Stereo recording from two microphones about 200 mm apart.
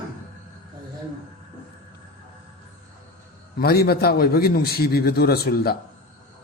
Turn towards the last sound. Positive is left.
turn(degrees=50)  # may be behind; listen again after turning